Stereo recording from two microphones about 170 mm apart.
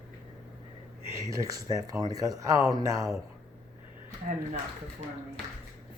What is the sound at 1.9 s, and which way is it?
Speech, 20° right (ahead or behind).